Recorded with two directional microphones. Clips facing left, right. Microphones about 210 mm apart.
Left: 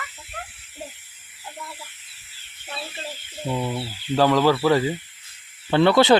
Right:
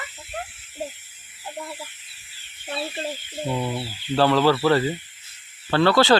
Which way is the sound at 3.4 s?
Centre (ahead or behind).